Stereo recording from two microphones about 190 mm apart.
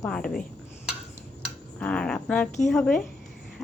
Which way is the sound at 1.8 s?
5° left (ahead or behind).